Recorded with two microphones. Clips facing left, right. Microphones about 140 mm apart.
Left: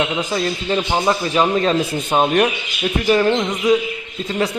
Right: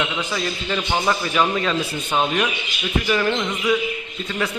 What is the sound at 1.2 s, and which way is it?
A man's voice, 30° left (ahead or behind).